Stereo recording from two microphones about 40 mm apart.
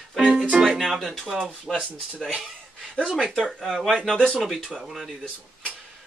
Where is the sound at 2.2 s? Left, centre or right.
Centre.